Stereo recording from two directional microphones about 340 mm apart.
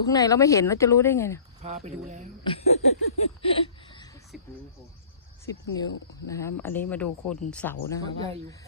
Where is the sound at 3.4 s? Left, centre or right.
Centre.